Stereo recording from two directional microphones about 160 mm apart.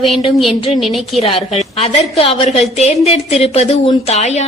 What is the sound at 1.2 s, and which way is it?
A woman's voice, 35° left (ahead or behind).